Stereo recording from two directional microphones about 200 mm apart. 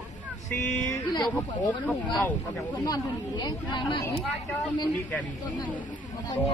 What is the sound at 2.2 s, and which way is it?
Speech, 5° left (ahead or behind).